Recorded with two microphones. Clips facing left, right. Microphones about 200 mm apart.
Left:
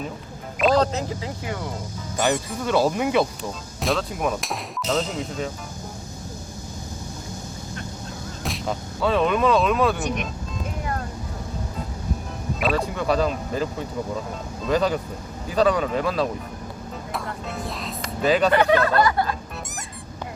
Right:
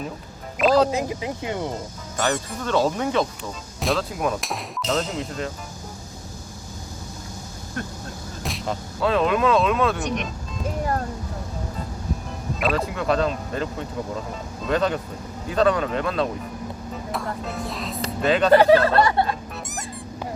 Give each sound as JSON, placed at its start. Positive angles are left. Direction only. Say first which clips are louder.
{"t": 0.6, "sound": "speech", "louder": "right 2 dB", "side_deg": -5}
{"t": 2.3, "sound": "speech", "louder": "even", "side_deg": 10}
{"t": 8.4, "sound": "speech", "louder": "even", "side_deg": 0}
{"t": 12.5, "sound": "speech", "louder": "even", "side_deg": 0}
{"t": 17.1, "sound": "music", "louder": "right 2 dB", "side_deg": 0}
{"t": 18.2, "sound": "speech", "louder": "left 1 dB", "side_deg": 5}
{"t": 18.5, "sound": "snicker", "louder": "right 4 dB", "side_deg": -35}